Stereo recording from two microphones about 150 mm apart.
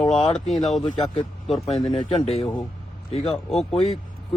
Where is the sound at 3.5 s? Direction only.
40° left (ahead or behind).